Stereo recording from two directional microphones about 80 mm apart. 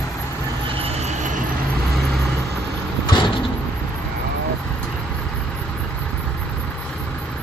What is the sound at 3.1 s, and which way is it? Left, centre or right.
Vehicle, left.